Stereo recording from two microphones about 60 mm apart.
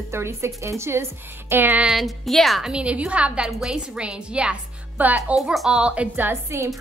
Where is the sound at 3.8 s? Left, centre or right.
Centre.